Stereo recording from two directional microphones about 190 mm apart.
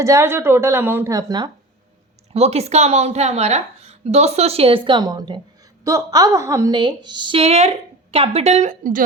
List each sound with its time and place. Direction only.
0.0 s a woman's voice: 15° right (ahead or behind)
2.3 s a woman's voice: 35° right (ahead or behind)